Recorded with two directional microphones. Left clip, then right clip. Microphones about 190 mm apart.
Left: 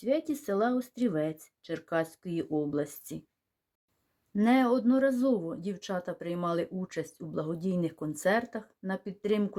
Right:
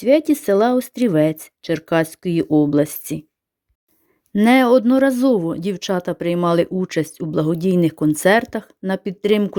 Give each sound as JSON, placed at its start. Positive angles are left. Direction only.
{"t": 0.0, "sound": "speech", "side_deg": -45}
{"t": 4.4, "sound": "speech", "side_deg": -50}